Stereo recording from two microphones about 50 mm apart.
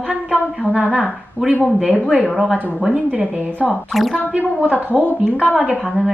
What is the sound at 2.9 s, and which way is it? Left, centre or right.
Speech, right.